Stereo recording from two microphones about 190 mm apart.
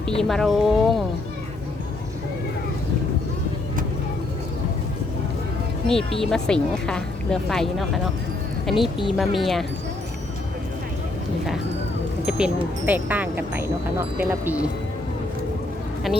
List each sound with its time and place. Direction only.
0.2 s speech: centre (ahead or behind)
5.9 s speech: centre (ahead or behind)
12.2 s speech: 5° right (ahead or behind)